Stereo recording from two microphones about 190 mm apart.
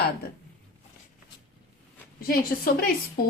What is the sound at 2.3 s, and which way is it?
Speech, 50° left (ahead or behind).